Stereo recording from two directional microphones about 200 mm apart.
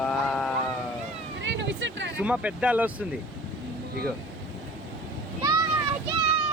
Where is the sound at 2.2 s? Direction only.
5° right (ahead or behind).